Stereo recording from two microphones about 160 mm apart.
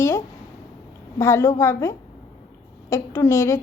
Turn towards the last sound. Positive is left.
turn(degrees=15)  # may be behind; listen again after turning